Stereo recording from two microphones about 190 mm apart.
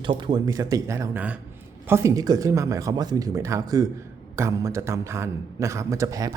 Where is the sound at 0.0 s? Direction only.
25° right (ahead or behind).